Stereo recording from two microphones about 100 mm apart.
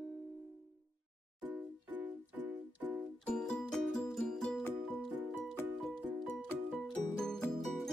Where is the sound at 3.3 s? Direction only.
5° left (ahead or behind).